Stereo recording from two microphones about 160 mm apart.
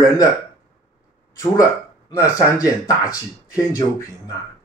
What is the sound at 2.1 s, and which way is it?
Speech, 20° left (ahead or behind).